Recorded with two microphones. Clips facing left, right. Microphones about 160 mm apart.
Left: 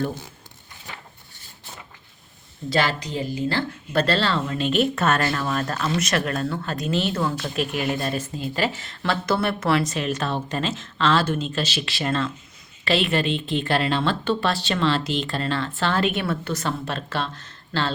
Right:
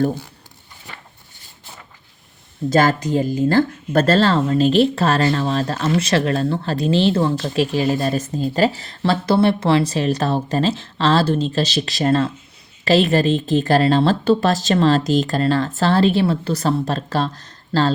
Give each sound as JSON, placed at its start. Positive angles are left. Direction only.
{"t": 2.6, "sound": "speech", "side_deg": -45}